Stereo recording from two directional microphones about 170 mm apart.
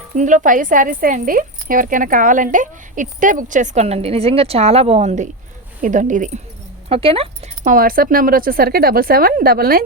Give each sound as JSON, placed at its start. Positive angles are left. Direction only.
{"t": 0.2, "sound": "speech", "side_deg": -50}
{"t": 6.8, "sound": "speech", "side_deg": -35}
{"t": 7.6, "sound": "speech", "side_deg": -55}